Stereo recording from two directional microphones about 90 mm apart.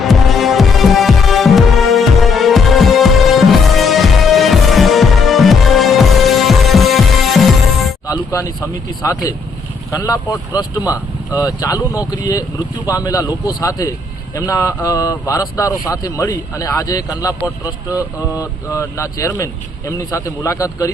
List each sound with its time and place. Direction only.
0.0 s music: centre (ahead or behind)
8.0 s speech: 40° left (ahead or behind)
18.7 s speech: 35° left (ahead or behind)